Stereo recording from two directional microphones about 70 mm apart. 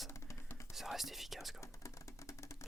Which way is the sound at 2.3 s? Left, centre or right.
Left.